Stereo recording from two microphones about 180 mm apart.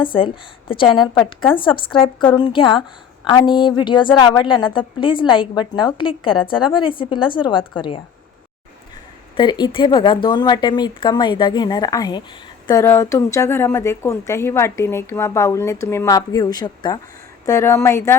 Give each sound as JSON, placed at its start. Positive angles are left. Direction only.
{"t": 0.0, "sound": "a woman's voice", "side_deg": 25}
{"t": 9.3, "sound": "a woman's voice", "side_deg": 25}